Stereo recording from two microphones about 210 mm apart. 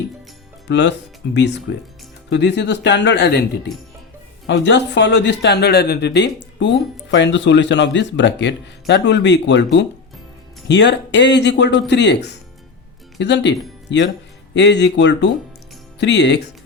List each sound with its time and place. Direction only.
0.7 s speech: 55° left (ahead or behind)